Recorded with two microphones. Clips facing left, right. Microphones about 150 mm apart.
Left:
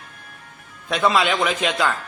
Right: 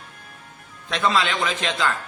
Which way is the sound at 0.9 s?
15° left (ahead or behind).